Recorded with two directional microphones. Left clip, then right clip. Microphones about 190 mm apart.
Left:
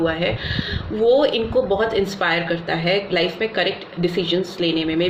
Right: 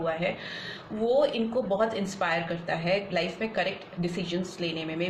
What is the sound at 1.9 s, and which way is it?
Speech, 40° left (ahead or behind).